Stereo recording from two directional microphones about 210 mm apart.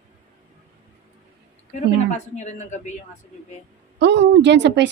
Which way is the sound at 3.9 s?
55° right (ahead or behind).